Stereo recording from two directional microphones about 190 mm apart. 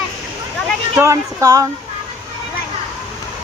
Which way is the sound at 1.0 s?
15° right (ahead or behind).